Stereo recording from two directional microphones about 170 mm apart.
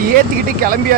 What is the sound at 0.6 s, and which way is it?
Speech, 55° right (ahead or behind).